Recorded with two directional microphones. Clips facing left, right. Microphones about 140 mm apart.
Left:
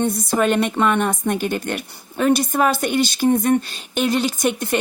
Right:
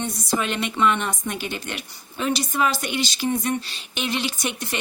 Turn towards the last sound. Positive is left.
turn(degrees=50)  # may be behind; listen again after turning